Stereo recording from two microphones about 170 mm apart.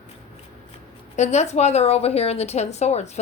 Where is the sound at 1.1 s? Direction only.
40° left (ahead or behind).